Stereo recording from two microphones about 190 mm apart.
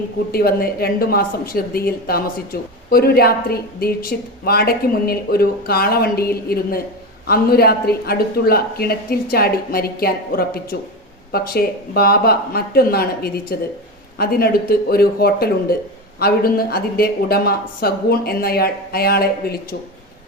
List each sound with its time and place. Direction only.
0.3 s a woman's voice: 55° left (ahead or behind)